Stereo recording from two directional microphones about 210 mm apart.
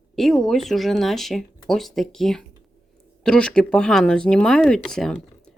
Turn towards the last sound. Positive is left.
turn(degrees=0)  # may be behind; listen again after turning